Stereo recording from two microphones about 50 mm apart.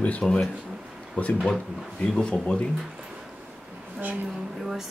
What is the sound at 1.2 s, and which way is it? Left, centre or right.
Speech, left.